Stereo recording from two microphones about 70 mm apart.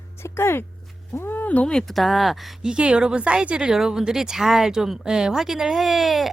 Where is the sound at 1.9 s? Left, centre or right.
Centre.